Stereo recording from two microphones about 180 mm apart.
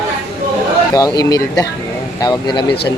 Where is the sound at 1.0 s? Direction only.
20° left (ahead or behind).